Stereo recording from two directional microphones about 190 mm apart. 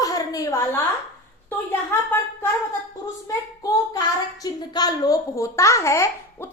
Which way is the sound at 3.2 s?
20° left (ahead or behind).